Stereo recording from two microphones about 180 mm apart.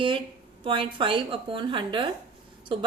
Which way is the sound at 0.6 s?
30° right (ahead or behind).